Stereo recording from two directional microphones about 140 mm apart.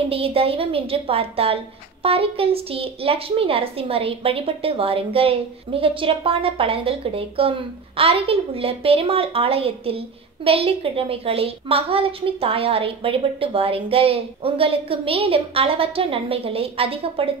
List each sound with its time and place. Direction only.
0.1 s a child's voice: 45° right (ahead or behind)